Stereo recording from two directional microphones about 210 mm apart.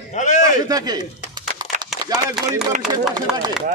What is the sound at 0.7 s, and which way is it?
Speech, 20° right (ahead or behind).